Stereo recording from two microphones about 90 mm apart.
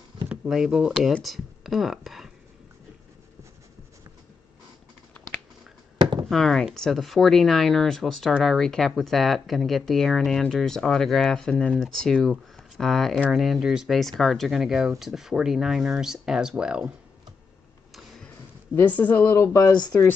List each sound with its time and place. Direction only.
0.1 s a sound: 70° right (ahead or behind)
0.5 s speech: 10° right (ahead or behind)
5.9 s a sound: 60° right (ahead or behind)
6.2 s speech: 5° left (ahead or behind)
18.8 s a woman's voice: 20° left (ahead or behind)
19.3 s speech: 35° left (ahead or behind)